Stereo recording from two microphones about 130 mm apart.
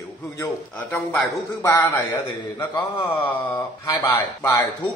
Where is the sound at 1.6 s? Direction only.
25° left (ahead or behind).